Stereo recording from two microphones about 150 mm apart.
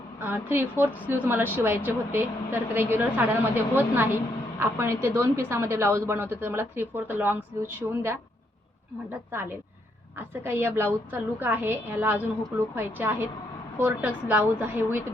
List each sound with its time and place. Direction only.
0.2 s a woman's voice: 15° right (ahead or behind)